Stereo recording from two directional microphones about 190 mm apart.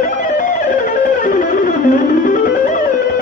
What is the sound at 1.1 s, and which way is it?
Music, 45° left (ahead or behind).